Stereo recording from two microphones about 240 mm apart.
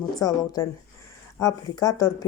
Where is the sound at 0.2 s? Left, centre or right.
Centre.